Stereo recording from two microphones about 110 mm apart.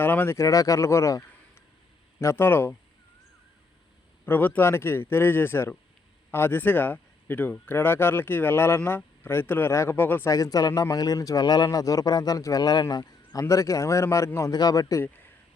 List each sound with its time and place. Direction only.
0.0 s speech: 20° left (ahead or behind)
4.3 s speech: 15° left (ahead or behind)
10.2 s a man's voice: 30° left (ahead or behind)
15.0 s speech: 15° left (ahead or behind)